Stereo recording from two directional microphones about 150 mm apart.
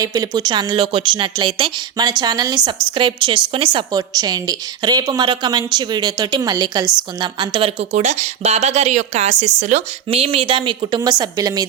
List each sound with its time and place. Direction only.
0.0 s a woman's voice: 25° right (ahead or behind)